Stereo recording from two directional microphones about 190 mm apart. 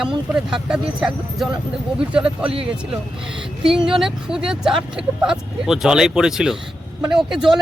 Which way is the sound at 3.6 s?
5° right (ahead or behind).